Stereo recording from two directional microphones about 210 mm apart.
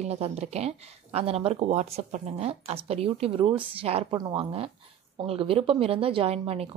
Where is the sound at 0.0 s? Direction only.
30° right (ahead or behind).